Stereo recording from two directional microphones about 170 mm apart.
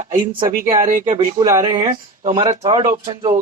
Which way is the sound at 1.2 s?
20° right (ahead or behind).